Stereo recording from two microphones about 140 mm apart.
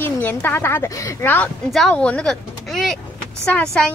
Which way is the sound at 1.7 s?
5° left (ahead or behind).